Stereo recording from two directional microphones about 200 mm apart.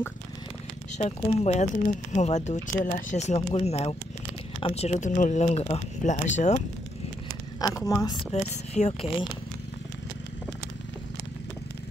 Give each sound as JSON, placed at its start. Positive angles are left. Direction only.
{"t": 0.9, "sound": "speech", "side_deg": 35}
{"t": 7.6, "sound": "a woman's voice", "side_deg": 15}
{"t": 8.3, "sound": "speech", "side_deg": 35}